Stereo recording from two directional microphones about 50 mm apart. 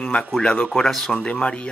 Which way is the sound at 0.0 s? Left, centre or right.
Centre.